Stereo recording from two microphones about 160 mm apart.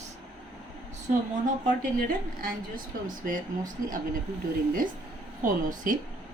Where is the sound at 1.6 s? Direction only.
60° right (ahead or behind).